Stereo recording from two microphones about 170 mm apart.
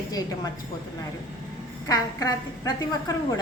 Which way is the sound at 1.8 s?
20° left (ahead or behind).